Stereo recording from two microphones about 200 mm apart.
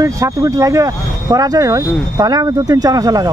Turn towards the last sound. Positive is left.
turn(degrees=-20)  # may be behind; listen again after turning